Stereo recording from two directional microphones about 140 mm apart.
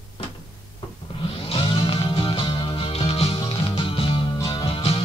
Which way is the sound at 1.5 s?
40° left (ahead or behind).